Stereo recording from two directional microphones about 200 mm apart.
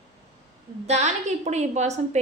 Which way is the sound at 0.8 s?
35° right (ahead or behind).